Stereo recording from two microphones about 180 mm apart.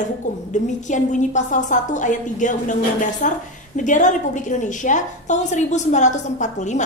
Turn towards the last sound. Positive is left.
turn(degrees=40)  # may be behind; listen again after turning